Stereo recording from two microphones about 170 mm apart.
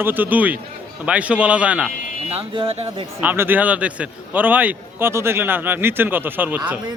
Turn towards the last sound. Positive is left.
turn(degrees=-10)  # may be behind; listen again after turning